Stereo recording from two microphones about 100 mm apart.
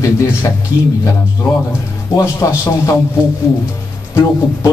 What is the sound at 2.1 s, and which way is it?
Speech, 30° left (ahead or behind).